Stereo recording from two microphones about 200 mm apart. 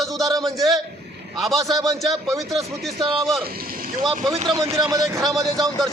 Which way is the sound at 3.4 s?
45° right (ahead or behind).